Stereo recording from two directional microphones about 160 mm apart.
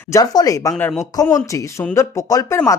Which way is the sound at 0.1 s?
20° left (ahead or behind).